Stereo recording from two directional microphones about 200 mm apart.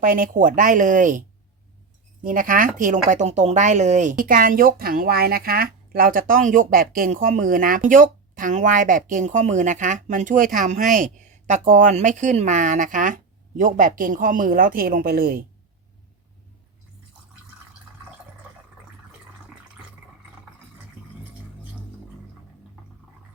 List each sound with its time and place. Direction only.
0.0 s speech: 45° right (ahead or behind)
2.2 s speech: 45° right (ahead or behind)